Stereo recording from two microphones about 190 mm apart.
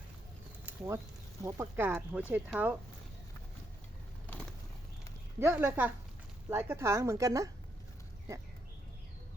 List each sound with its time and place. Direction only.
0.6 s a sound: 15° right (ahead or behind)
1.5 s a woman's voice: 15° right (ahead or behind)
5.4 s a woman's voice: 10° right (ahead or behind)